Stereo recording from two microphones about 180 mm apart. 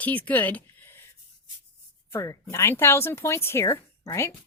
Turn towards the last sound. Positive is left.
turn(degrees=15)  # may be behind; listen again after turning